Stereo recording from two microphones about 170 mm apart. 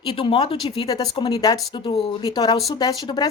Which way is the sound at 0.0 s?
30° left (ahead or behind).